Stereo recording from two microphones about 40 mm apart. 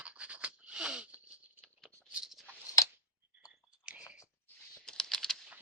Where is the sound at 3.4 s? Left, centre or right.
Right.